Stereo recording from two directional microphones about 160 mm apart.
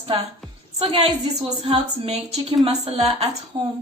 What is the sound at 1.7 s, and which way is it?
A woman's voice, 35° right (ahead or behind).